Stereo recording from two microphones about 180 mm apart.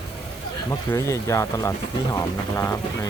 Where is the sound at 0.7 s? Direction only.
15° left (ahead or behind).